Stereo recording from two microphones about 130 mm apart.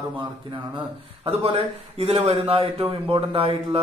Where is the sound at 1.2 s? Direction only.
50° right (ahead or behind).